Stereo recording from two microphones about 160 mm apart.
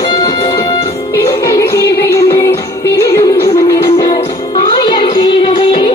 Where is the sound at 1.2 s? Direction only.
20° left (ahead or behind).